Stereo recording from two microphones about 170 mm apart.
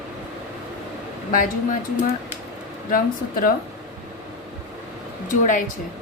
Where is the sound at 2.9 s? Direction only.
60° left (ahead or behind).